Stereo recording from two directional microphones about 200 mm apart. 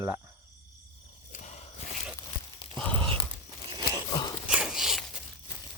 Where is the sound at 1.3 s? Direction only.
35° left (ahead or behind).